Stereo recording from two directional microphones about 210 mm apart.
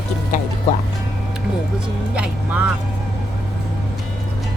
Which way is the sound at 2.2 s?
5° right (ahead or behind).